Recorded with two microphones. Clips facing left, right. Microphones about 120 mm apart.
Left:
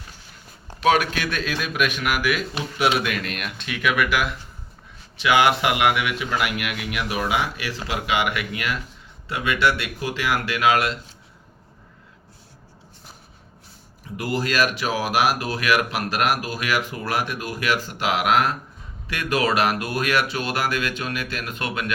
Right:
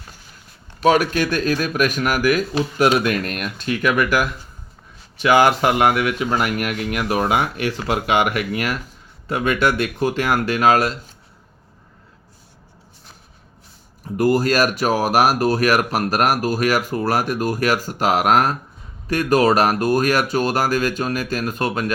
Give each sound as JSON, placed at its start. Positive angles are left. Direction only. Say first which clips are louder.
{"t": 0.8, "sound": "speech", "louder": "right 4 dB", "side_deg": -40}
{"t": 14.2, "sound": "speech", "louder": "right 6 dB", "side_deg": -45}